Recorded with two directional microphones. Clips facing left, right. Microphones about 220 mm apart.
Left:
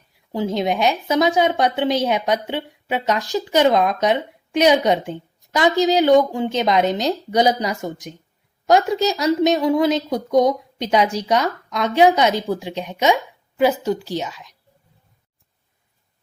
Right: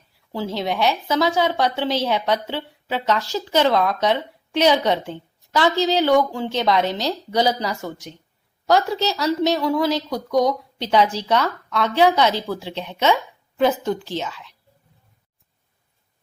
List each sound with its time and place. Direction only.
0.3 s a woman's voice: 20° left (ahead or behind)